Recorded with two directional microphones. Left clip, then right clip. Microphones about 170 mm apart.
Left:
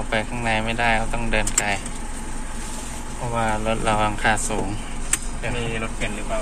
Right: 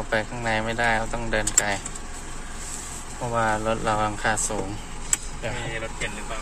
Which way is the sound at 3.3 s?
40° right (ahead or behind).